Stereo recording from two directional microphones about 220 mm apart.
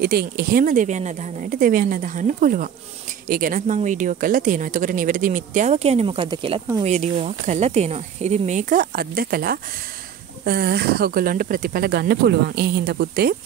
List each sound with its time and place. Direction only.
0.0 s speech: 45° right (ahead or behind)